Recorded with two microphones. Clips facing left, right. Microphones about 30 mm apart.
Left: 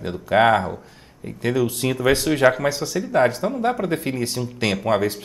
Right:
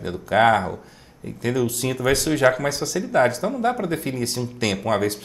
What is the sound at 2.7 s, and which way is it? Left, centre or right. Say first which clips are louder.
Speech: left 2 dB; left.